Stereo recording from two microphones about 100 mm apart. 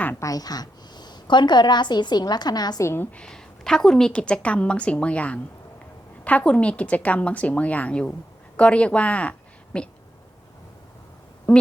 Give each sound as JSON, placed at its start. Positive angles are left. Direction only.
{"t": 0.2, "sound": "a woman's voice", "side_deg": 35}
{"t": 2.8, "sound": "a woman's voice", "side_deg": 20}
{"t": 11.5, "sound": "a sound", "side_deg": 20}